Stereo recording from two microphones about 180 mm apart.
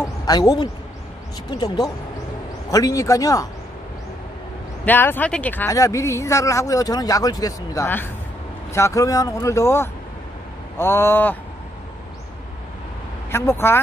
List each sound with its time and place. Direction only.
0.0 s a sound: 20° left (ahead or behind)
1.5 s speech: 25° left (ahead or behind)
4.8 s speech: 10° left (ahead or behind)
13.3 s speech: 15° left (ahead or behind)